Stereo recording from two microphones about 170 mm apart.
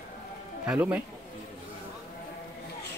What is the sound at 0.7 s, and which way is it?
Speech, 10° right (ahead or behind).